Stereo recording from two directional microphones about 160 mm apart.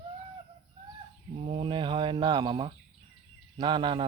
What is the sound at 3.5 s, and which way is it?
Speech, 30° right (ahead or behind).